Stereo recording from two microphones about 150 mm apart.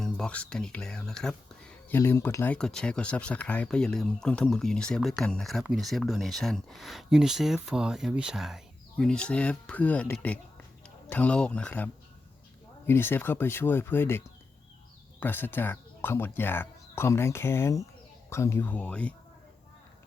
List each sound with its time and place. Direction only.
0.0 s speech: 5° left (ahead or behind)
1.9 s speech: 15° left (ahead or behind)
15.2 s speech: 15° left (ahead or behind)